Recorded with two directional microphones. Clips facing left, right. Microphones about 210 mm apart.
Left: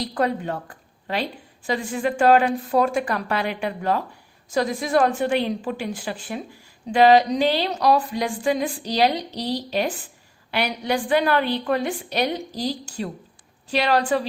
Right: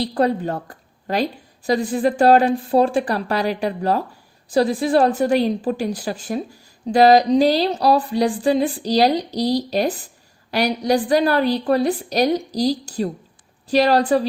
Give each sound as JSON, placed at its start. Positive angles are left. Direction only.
{"t": 0.0, "sound": "a woman's voice", "side_deg": -30}